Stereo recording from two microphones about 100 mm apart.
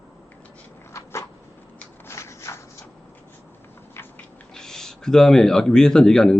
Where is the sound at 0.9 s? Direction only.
30° left (ahead or behind).